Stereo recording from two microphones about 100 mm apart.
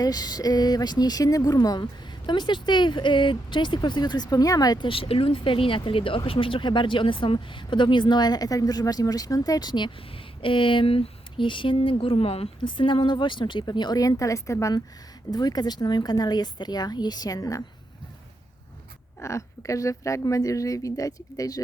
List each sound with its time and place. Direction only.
0.0 s speech: 40° left (ahead or behind)
4.9 s speech: 70° left (ahead or behind); by 9.9 s 45° left (ahead or behind)
10.4 s speech: 60° left (ahead or behind); by 14.8 s 30° left (ahead or behind)
15.3 s speech: 45° left (ahead or behind)
19.2 s speech: 30° left (ahead or behind)